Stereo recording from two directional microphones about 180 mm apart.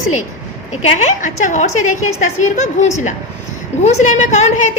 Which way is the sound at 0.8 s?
40° left (ahead or behind).